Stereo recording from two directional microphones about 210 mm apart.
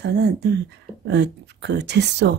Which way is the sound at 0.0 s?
50° right (ahead or behind).